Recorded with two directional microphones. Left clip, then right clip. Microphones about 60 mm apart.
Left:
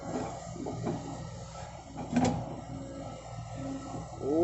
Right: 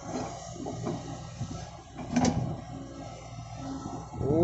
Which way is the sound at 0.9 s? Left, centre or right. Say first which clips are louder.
Even; centre.